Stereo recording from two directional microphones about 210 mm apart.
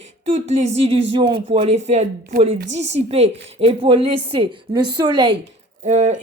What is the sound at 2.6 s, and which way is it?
Speech, 60° right (ahead or behind).